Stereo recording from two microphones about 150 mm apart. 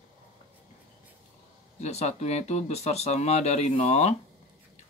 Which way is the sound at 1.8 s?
45° left (ahead or behind).